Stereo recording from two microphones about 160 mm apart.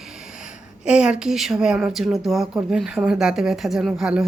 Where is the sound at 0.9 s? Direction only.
5° right (ahead or behind).